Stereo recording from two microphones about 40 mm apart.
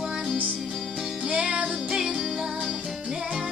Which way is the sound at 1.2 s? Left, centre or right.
Right.